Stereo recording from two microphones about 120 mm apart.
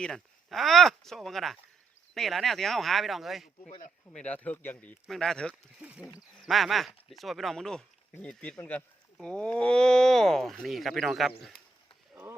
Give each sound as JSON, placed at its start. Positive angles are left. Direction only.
{"t": 0.0, "sound": "speech", "side_deg": 5}
{"t": 4.1, "sound": "speech", "side_deg": 10}
{"t": 5.0, "sound": "speech", "side_deg": 0}
{"t": 5.8, "sound": "speech", "side_deg": -10}